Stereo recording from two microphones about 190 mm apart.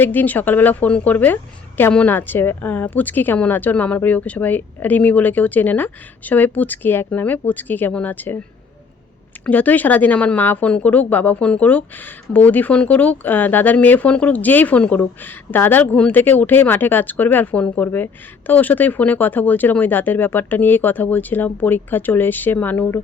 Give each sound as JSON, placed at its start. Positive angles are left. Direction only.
{"t": 0.0, "sound": "speech", "side_deg": 10}
{"t": 9.5, "sound": "speech", "side_deg": 10}